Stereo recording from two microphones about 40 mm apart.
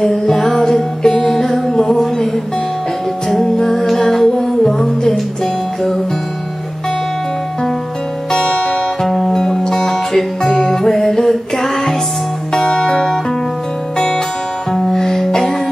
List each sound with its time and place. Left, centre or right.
0.0 s music: centre
3.5 s music: centre
8.3 s music: left
9.0 s music: centre
12.5 s music: centre